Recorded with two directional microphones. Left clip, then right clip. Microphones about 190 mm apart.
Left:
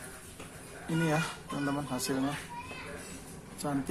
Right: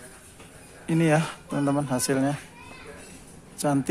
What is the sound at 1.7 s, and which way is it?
Speech, 45° right (ahead or behind).